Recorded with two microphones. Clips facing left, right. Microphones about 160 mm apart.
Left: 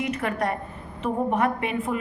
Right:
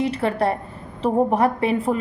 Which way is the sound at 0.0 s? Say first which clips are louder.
Right 5 dB; 30° right (ahead or behind).